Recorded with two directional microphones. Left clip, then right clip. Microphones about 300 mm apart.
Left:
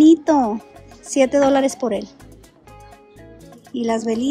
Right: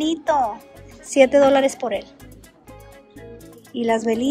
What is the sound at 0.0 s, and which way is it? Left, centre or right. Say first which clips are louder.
A woman's voice: left 6 dB; centre.